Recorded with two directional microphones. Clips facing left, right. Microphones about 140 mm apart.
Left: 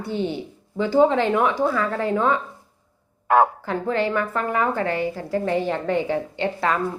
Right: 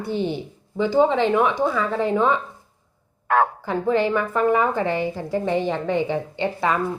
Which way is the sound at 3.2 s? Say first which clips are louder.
Left 2 dB; 10° left (ahead or behind).